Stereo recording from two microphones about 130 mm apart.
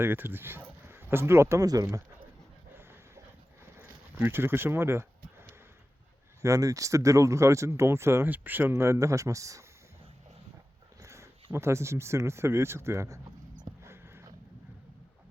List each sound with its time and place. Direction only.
0.0 s speech: 15° right (ahead or behind)
3.8 s a sound: 15° right (ahead or behind)
6.4 s speech: 25° right (ahead or behind)
11.0 s dog: 20° right (ahead or behind)
11.5 s speech: 20° right (ahead or behind)
13.8 s a sound: 20° right (ahead or behind)